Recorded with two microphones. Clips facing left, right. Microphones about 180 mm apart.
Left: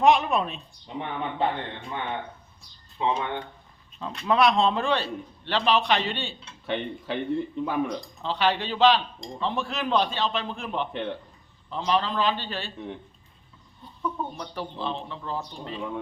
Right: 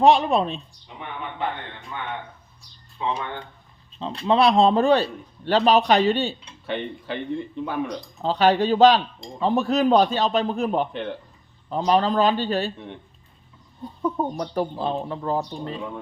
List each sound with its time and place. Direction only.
0.0 s a man's voice: 30° right (ahead or behind)
3.0 s speech: 20° left (ahead or behind)
4.0 s a man's voice: 30° right (ahead or behind)
6.7 s speech: centre (ahead or behind)
8.2 s a man's voice: 40° right (ahead or behind)
10.9 s speech: centre (ahead or behind)
11.7 s speech: 40° right (ahead or behind)
13.8 s speech: 45° right (ahead or behind)